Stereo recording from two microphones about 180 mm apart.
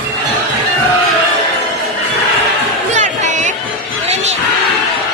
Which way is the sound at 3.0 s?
45° right (ahead or behind).